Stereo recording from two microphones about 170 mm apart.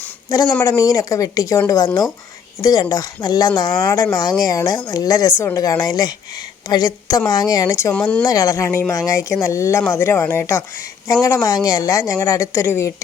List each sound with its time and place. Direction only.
0.6 s speech: 20° left (ahead or behind)
7.9 s speech: 5° left (ahead or behind)
8.2 s speech: 20° left (ahead or behind)